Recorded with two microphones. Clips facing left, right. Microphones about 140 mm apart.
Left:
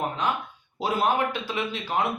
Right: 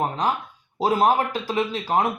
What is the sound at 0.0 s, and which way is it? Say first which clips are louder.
Speech: right 3 dB; 35° right (ahead or behind).